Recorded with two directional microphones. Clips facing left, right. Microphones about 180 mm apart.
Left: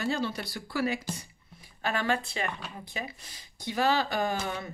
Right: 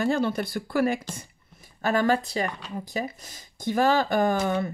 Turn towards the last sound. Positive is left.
turn(degrees=-50)  # may be behind; listen again after turning